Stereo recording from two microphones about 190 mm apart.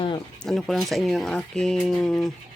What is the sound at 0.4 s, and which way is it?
Speech, centre (ahead or behind).